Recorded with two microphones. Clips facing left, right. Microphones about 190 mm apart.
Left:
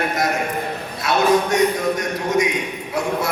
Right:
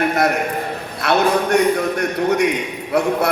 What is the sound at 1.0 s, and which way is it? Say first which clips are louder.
Speech: right 3 dB; 60° right (ahead or behind).